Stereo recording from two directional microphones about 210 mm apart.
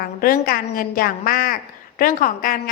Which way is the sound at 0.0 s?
45° left (ahead or behind).